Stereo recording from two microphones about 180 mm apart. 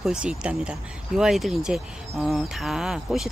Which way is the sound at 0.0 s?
5° right (ahead or behind).